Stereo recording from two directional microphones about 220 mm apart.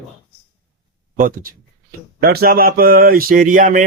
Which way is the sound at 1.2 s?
40° right (ahead or behind).